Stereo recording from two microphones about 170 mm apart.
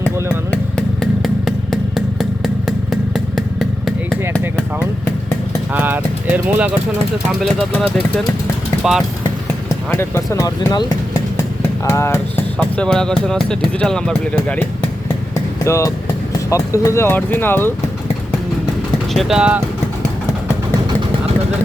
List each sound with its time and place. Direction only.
0.5 s vehicle: 5° left (ahead or behind)
2.6 s motorcycle: centre (ahead or behind)
5.7 s a sound: 10° right (ahead or behind)
7.3 s speech: centre (ahead or behind)
9.9 s speech: 15° left (ahead or behind)
11.9 s speech: 15° left (ahead or behind)
19.1 s speech: centre (ahead or behind)